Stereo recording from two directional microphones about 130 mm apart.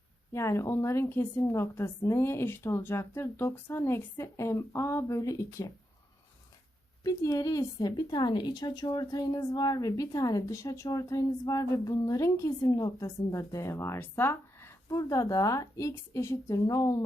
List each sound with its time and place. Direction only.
0.3 s a woman's voice: 20° left (ahead or behind)
7.0 s a woman's voice: 25° left (ahead or behind)